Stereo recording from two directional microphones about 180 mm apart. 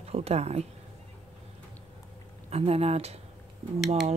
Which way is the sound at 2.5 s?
35° right (ahead or behind).